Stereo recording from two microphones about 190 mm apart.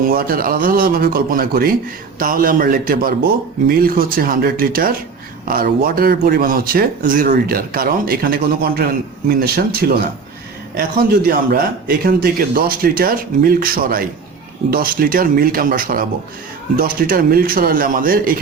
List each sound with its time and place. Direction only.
0.0 s speech: 50° right (ahead or behind)